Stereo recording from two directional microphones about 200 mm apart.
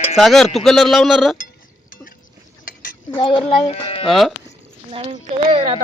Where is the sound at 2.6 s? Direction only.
45° left (ahead or behind).